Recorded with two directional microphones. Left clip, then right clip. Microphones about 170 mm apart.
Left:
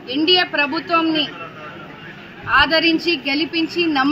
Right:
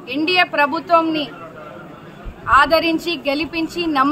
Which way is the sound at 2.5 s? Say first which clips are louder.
Right 1 dB; 40° right (ahead or behind).